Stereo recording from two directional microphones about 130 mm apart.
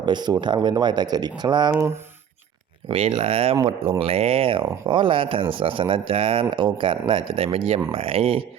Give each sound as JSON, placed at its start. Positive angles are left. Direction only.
{"t": 0.0, "sound": "speech", "side_deg": -35}
{"t": 2.9, "sound": "speech", "side_deg": -50}